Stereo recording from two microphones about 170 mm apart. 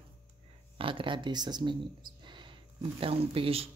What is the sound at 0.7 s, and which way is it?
Speech, 30° right (ahead or behind).